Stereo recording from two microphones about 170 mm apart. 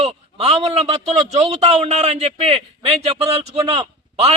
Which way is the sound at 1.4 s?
40° right (ahead or behind).